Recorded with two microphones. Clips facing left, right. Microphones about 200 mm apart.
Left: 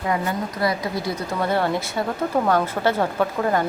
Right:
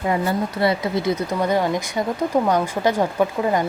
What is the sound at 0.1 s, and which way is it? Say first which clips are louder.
A woman's voice: right 3 dB; 25° right (ahead or behind).